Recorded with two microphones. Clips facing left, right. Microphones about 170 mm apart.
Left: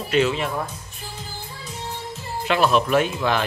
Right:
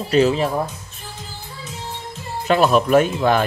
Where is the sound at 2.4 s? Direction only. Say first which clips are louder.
Right 4 dB; 45° right (ahead or behind).